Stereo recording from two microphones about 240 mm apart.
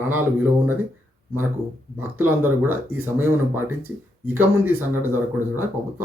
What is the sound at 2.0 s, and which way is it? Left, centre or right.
Speech, centre.